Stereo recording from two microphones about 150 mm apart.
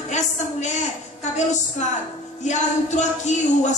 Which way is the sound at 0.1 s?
50° left (ahead or behind).